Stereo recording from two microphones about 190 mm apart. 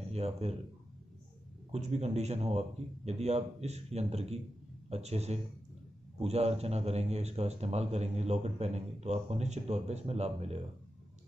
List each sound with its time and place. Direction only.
0.1 s a man's voice: 35° right (ahead or behind)
1.7 s a man's voice: 35° right (ahead or behind)